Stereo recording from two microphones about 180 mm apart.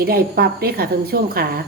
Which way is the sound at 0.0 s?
60° right (ahead or behind).